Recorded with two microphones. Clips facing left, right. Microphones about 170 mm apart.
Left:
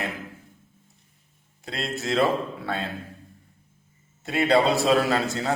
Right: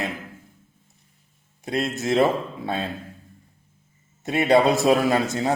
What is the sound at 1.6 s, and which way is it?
Speech, 20° right (ahead or behind).